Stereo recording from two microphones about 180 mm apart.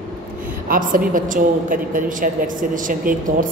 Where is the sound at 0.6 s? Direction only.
50° right (ahead or behind).